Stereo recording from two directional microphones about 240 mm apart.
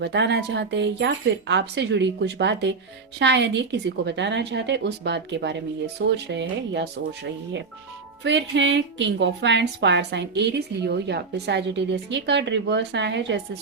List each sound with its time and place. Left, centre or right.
0.0 s a woman's voice: right
8.2 s a woman's voice: right